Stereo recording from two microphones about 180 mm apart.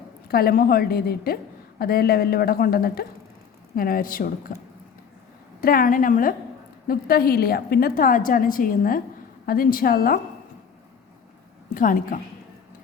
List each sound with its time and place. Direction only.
0.3 s a woman's voice: 60° left (ahead or behind)
5.5 s a woman's voice: 50° left (ahead or behind)
11.7 s a woman's voice: 50° left (ahead or behind)